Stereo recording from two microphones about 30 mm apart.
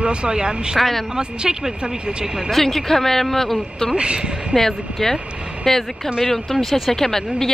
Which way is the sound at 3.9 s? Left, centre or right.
Right.